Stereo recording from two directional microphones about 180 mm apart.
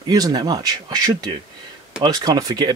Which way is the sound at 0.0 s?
20° right (ahead or behind).